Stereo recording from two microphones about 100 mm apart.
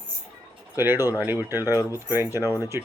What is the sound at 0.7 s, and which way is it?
Speech, 25° right (ahead or behind).